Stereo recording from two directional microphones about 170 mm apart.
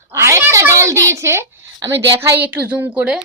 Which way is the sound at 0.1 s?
15° right (ahead or behind).